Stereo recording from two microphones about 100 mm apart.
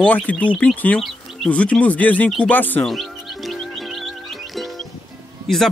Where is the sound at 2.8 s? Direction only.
Centre (ahead or behind).